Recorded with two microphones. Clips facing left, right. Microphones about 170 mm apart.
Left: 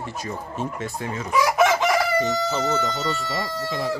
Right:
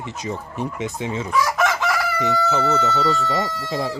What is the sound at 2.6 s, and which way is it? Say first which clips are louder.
Speech: right 3 dB; 15° left (ahead or behind).